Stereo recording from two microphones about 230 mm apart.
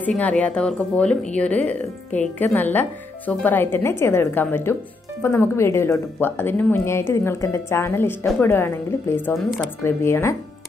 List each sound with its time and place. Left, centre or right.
0.0 s a woman's voice: centre